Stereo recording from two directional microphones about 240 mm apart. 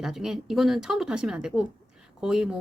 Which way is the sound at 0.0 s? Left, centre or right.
Centre.